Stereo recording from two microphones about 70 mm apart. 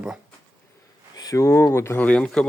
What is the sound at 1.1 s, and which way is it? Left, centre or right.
Speech, left.